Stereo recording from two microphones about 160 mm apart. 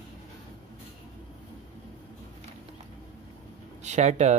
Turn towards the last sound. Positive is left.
turn(degrees=-45)  # may be behind; listen again after turning